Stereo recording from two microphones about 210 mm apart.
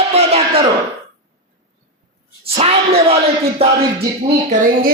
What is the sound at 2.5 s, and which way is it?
Speech, 30° right (ahead or behind).